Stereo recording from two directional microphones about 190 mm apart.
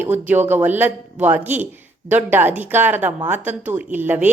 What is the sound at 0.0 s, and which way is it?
A woman's voice, 10° right (ahead or behind).